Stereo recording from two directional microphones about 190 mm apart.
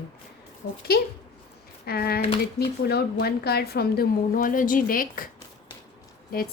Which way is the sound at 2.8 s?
55° left (ahead or behind).